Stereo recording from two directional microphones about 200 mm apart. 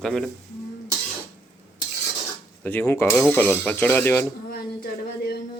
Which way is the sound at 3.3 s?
10° left (ahead or behind).